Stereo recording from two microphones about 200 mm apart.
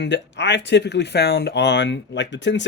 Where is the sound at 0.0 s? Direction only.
60° left (ahead or behind).